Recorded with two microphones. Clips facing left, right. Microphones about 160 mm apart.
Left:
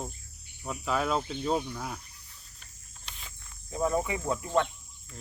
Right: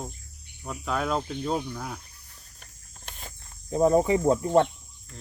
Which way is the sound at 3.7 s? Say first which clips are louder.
Right 8 dB; 35° right (ahead or behind).